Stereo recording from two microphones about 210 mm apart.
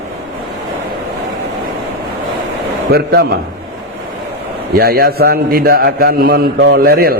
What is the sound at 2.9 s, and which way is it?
Speech, 50° right (ahead or behind).